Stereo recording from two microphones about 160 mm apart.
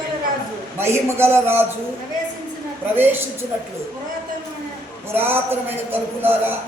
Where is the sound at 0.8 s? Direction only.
15° right (ahead or behind).